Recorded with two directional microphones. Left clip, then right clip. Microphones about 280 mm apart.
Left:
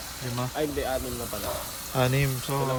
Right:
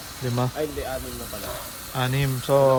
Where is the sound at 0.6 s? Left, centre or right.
Left.